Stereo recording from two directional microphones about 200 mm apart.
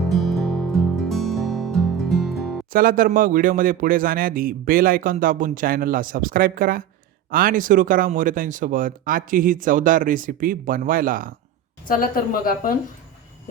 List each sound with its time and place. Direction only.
0.1 s music: centre (ahead or behind)
2.7 s a man's voice: 45° right (ahead or behind)
11.9 s a woman's voice: 45° left (ahead or behind)